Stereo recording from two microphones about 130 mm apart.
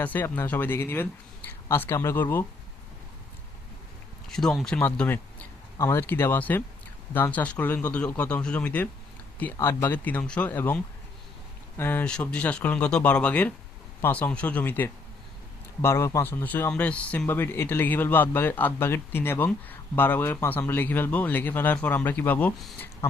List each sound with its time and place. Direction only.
0.0 s speech: 15° left (ahead or behind)
4.3 s speech: 5° left (ahead or behind)
11.8 s speech: 15° left (ahead or behind)